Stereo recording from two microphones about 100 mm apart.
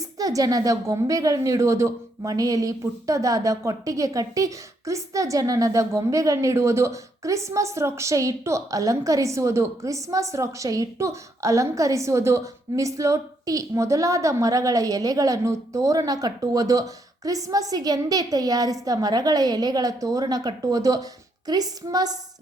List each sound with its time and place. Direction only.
0.0 s speech: 35° right (ahead or behind)